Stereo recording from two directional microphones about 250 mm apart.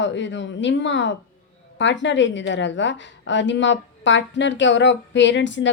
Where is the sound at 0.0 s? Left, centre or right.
Left.